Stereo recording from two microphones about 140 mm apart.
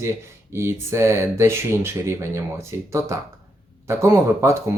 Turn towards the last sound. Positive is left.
turn(degrees=-20)  # may be behind; listen again after turning